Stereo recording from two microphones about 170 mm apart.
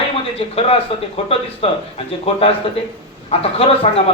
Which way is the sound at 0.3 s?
35° left (ahead or behind).